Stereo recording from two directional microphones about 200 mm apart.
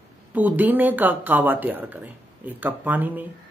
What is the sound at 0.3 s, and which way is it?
Speech, 10° right (ahead or behind).